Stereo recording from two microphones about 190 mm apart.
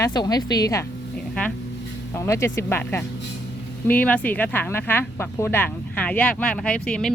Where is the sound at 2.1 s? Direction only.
15° left (ahead or behind).